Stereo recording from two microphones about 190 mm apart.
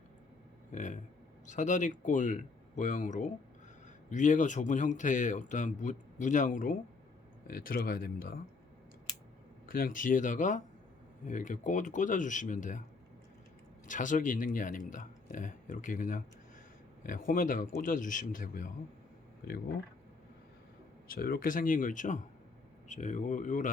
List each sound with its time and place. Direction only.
0.7 s speech: 40° left (ahead or behind)
9.6 s speech: 50° left (ahead or behind)
13.8 s speech: 40° left (ahead or behind)
21.2 s speech: 50° left (ahead or behind)